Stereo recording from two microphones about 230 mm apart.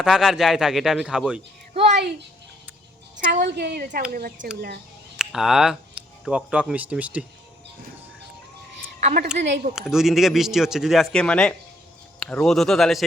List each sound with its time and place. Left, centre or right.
0.0 s speech: centre
3.4 s a woman's voice: right
5.1 s speech: centre
9.0 s a sound: right
9.2 s a woman's voice: right
9.7 s speech: centre